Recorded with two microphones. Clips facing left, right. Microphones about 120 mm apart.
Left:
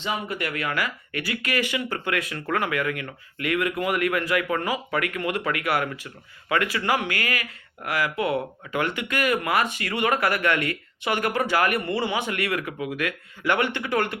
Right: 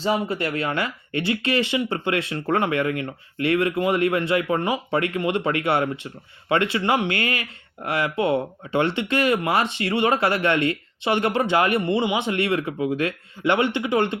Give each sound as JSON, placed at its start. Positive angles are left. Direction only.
{"t": 0.0, "sound": "speech", "side_deg": -30}